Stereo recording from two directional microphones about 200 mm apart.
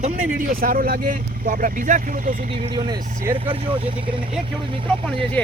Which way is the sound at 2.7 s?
25° right (ahead or behind).